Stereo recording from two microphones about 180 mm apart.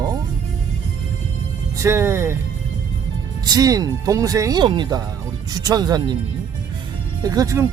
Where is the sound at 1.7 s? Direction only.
15° right (ahead or behind).